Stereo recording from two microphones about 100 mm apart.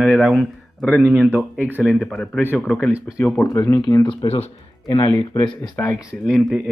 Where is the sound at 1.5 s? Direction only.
15° right (ahead or behind).